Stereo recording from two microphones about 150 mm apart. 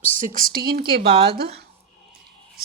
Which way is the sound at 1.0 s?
35° right (ahead or behind).